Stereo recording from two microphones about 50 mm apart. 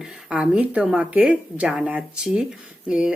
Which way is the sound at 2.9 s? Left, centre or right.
Centre.